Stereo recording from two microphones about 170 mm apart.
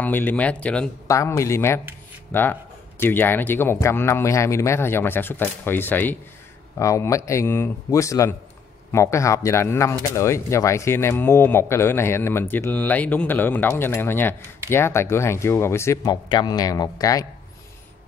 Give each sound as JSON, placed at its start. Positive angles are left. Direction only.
{"t": 0.0, "sound": "a man's voice", "side_deg": 10}
{"t": 1.0, "sound": "a man's voice", "side_deg": 20}